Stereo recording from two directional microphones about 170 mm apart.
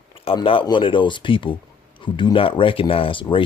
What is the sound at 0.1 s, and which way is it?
Speech, 30° left (ahead or behind).